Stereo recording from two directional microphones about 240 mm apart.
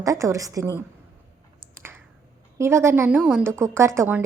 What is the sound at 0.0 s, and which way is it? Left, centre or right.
Speech, centre.